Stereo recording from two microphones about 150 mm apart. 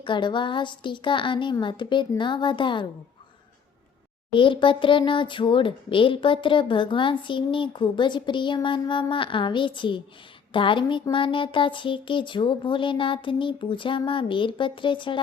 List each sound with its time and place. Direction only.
0.0 s speech: 30° left (ahead or behind)
4.3 s speech: 35° left (ahead or behind)